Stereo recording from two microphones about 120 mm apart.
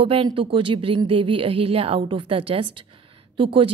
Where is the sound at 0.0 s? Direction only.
45° right (ahead or behind).